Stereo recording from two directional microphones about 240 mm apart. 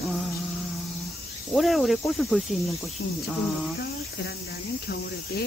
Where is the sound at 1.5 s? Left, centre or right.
Centre.